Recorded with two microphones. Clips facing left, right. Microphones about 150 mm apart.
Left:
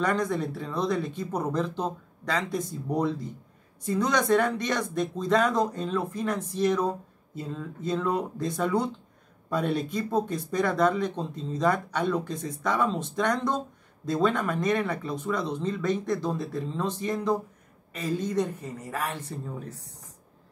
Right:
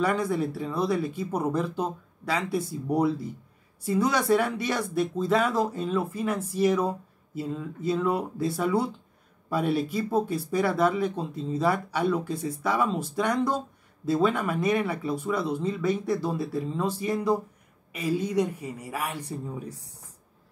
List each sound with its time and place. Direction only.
0.0 s speech: 5° right (ahead or behind)